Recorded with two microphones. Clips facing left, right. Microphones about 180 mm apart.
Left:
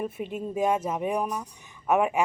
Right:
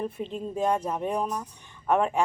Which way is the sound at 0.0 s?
10° left (ahead or behind).